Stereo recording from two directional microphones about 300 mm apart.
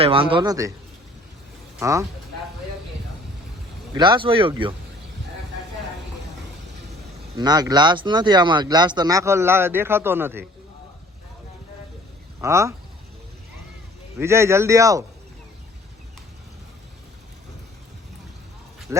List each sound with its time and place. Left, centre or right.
0.0 s speech: centre
1.8 s speech: centre
3.9 s speech: centre
7.3 s speech: centre
12.4 s speech: centre
14.2 s speech: centre
18.9 s speech: centre